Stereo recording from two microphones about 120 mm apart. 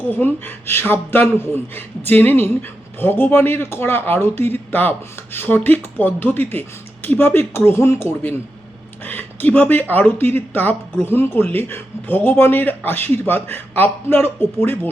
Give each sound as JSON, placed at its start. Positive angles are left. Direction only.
{"t": 0.0, "sound": "speech", "side_deg": 15}